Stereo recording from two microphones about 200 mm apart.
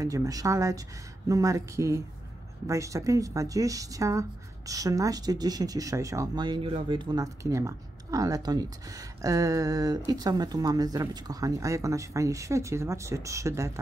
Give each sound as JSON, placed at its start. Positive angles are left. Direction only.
{"t": 0.0, "sound": "speech", "side_deg": -15}